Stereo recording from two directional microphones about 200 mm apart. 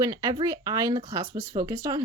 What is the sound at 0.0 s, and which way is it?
A woman's voice, 15° right (ahead or behind).